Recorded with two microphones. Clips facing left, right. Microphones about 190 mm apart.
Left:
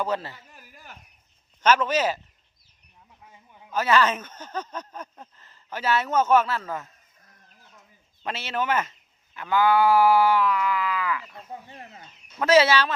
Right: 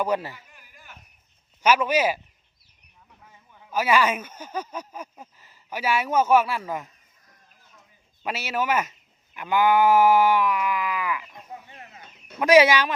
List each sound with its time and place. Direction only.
0.0 s speech: 10° right (ahead or behind)
0.3 s a sound: 45° left (ahead or behind)
1.6 s speech: 10° right (ahead or behind)
3.7 s speech: 10° right (ahead or behind)
8.2 s speech: 10° right (ahead or behind)